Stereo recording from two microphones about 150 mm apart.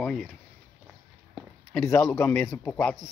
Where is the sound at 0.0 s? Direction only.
5° left (ahead or behind).